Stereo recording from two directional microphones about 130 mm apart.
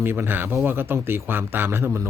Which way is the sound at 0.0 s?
15° right (ahead or behind).